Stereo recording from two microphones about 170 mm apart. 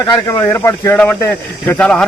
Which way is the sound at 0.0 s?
20° left (ahead or behind).